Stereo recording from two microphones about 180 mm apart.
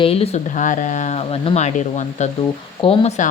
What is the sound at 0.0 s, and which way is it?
Speech, 35° left (ahead or behind).